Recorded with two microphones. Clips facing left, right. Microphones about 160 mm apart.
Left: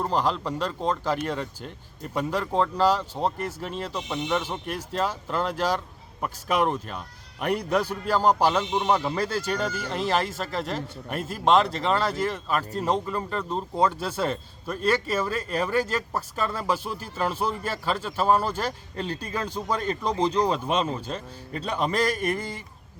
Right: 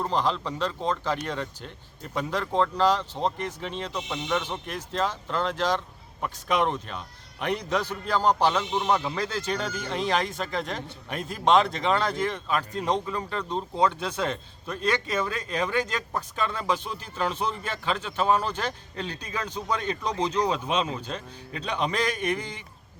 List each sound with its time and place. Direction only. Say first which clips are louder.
0.0 s a man's voice: left 1 dB; 10° left (ahead or behind)
22.1 s a man's voice: left 1 dB; 45° left (ahead or behind)